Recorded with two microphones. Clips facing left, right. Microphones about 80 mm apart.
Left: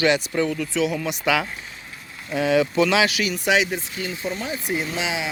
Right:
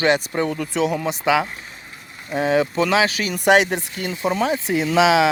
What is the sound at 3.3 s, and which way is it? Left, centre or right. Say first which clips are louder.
Speech: right 5 dB; right.